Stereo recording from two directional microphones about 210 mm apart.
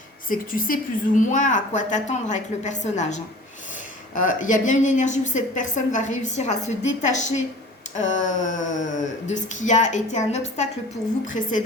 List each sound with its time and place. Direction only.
0.3 s a woman's voice: 40° left (ahead or behind)